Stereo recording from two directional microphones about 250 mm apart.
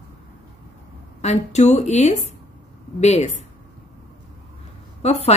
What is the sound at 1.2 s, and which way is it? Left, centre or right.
A woman's voice, left.